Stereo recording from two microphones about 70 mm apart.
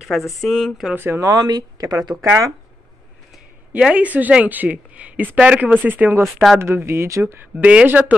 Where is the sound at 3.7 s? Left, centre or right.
Centre.